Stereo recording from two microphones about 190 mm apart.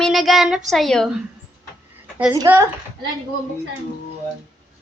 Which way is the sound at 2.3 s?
15° right (ahead or behind).